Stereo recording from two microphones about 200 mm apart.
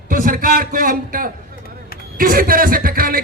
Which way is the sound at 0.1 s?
45° right (ahead or behind).